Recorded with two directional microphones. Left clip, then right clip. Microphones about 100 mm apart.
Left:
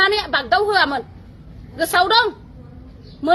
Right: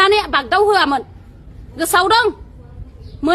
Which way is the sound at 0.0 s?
40° right (ahead or behind).